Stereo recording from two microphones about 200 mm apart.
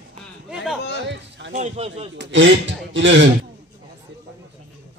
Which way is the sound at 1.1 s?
60° right (ahead or behind).